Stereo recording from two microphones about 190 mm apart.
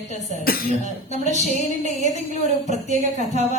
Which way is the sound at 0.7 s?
40° right (ahead or behind).